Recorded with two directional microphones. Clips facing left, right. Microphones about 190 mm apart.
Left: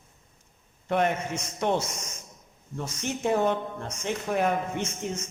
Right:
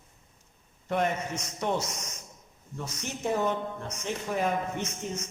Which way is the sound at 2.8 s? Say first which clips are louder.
Left 4 dB; 55° left (ahead or behind).